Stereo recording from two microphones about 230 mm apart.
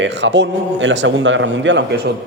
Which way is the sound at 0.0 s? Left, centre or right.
Right.